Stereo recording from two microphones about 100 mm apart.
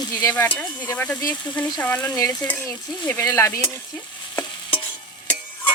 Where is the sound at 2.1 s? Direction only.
35° left (ahead or behind).